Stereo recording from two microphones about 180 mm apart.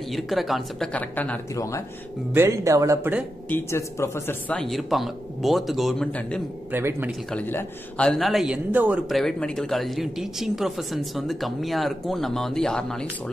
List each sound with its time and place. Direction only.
0.1 s a man's voice: centre (ahead or behind)
2.3 s speech: 15° right (ahead or behind)
3.4 s a man's voice: 10° left (ahead or behind)
6.7 s speech: 15° right (ahead or behind)
7.1 s a man's voice: 10° left (ahead or behind)